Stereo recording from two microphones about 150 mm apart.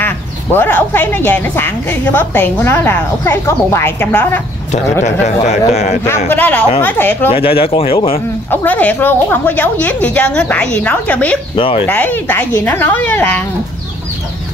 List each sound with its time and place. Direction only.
0.0 s speech: 15° left (ahead or behind)
5.2 s speech: 45° left (ahead or behind)
6.2 s speech: 10° left (ahead or behind)
7.2 s speech: 40° left (ahead or behind)
8.5 s speech: 10° left (ahead or behind)
11.5 s speech: 35° left (ahead or behind)
11.9 s speech: 10° left (ahead or behind)